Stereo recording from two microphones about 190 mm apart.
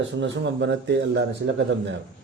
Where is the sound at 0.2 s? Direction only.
70° right (ahead or behind).